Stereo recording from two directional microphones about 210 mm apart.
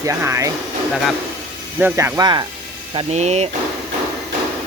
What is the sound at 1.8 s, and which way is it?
Speech, 15° right (ahead or behind).